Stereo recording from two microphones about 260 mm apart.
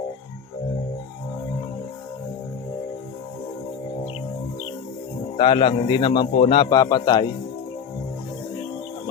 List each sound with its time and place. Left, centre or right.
5.4 s a man's voice: centre